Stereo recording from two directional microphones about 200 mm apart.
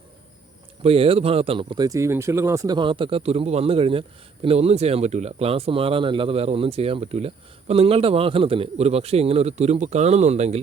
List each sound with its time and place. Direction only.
0.8 s speech: 30° right (ahead or behind)